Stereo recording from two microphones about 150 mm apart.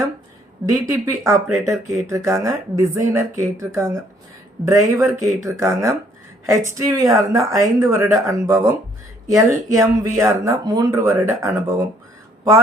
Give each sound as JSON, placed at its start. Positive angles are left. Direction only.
{"t": 0.6, "sound": "speech", "side_deg": -20}